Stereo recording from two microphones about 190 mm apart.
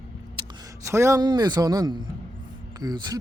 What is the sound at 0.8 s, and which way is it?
Speech, 15° right (ahead or behind).